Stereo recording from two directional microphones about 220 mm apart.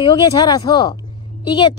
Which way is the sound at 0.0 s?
25° left (ahead or behind).